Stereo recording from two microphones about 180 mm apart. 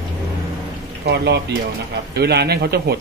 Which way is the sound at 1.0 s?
65° right (ahead or behind).